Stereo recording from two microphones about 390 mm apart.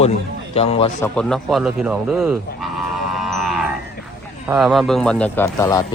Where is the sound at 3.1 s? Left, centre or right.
Centre.